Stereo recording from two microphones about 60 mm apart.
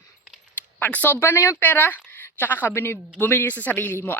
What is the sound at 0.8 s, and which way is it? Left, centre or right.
Speech, left.